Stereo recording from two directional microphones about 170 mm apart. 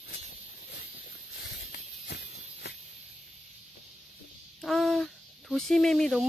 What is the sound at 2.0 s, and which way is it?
Walk, 75° left (ahead or behind).